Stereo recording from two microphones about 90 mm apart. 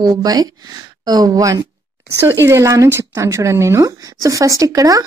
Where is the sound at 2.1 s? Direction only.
30° right (ahead or behind).